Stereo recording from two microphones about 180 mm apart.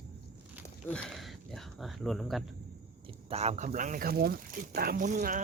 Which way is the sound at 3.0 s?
30° right (ahead or behind).